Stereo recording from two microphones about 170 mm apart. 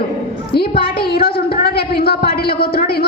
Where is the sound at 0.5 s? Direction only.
65° left (ahead or behind).